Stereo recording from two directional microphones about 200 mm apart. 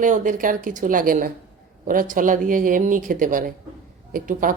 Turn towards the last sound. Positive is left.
turn(degrees=-45)  # may be behind; listen again after turning